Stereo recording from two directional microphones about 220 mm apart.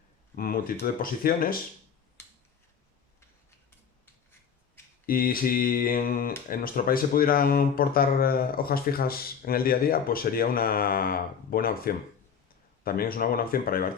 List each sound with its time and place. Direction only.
0.3 s speech: 40° left (ahead or behind)
5.0 s speech: 40° left (ahead or behind)